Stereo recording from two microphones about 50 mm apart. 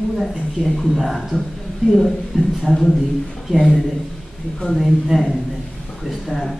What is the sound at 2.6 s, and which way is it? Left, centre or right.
A man's voice, centre.